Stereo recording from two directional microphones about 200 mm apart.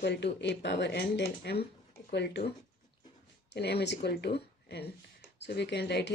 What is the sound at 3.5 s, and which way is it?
Speech, 55° left (ahead or behind).